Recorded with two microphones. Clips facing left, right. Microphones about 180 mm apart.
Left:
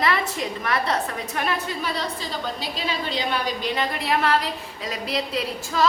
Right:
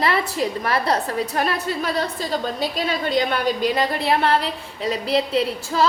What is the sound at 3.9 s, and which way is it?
Speech, 30° right (ahead or behind).